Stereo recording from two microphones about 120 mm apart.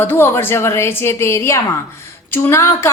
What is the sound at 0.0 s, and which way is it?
A woman's voice, 20° left (ahead or behind).